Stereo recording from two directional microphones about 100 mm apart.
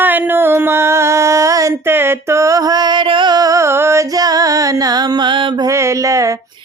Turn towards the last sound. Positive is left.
turn(degrees=-30)  # may be behind; listen again after turning